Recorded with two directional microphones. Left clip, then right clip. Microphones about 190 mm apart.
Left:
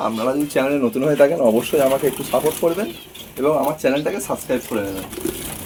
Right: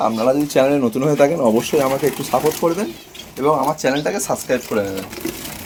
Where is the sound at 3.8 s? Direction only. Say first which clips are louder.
Right 1 dB; 55° right (ahead or behind).